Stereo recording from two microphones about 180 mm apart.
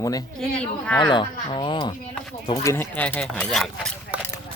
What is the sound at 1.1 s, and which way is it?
Speech, 25° left (ahead or behind).